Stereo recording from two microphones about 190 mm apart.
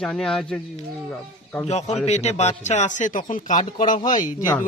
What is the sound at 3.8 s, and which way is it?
Speech, 30° left (ahead or behind).